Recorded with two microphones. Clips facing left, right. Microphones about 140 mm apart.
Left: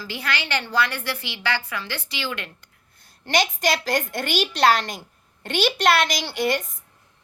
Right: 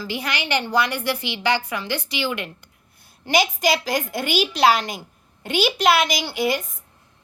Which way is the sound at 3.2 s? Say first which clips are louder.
Right 2 dB; 5° right (ahead or behind).